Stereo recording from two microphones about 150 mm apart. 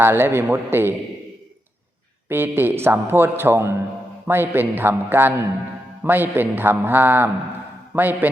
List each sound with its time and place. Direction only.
0.0 s a man's voice: 15° right (ahead or behind)
2.3 s a man's voice: 15° right (ahead or behind)